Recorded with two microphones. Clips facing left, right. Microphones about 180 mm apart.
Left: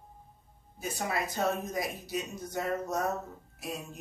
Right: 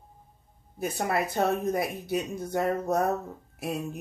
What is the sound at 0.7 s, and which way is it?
Speech, 60° right (ahead or behind).